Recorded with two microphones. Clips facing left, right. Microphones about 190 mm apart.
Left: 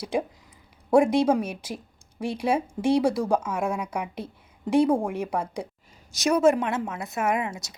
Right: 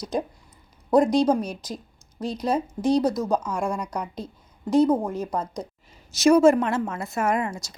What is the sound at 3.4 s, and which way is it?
A woman's voice, 5° left (ahead or behind).